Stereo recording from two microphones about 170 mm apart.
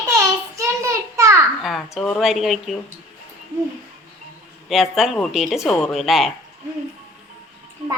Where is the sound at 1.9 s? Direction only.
5° left (ahead or behind).